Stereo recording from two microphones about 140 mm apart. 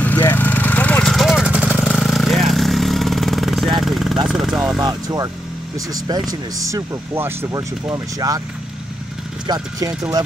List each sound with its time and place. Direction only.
0.0 s vehicle: 15° left (ahead or behind)
1.1 s vehicle: centre (ahead or behind)
4.8 s speech: 30° right (ahead or behind)
9.5 s speech: 30° right (ahead or behind)